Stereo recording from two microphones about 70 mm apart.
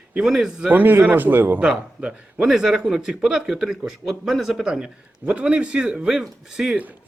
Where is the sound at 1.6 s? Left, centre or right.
Centre.